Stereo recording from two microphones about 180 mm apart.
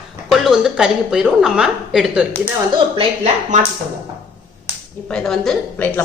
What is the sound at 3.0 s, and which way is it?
Speech, 40° right (ahead or behind).